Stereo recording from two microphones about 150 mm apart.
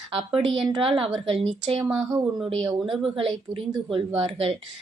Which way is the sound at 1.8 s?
5° right (ahead or behind).